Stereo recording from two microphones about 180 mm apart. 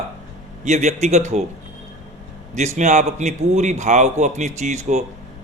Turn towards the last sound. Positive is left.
turn(degrees=-40)  # may be behind; listen again after turning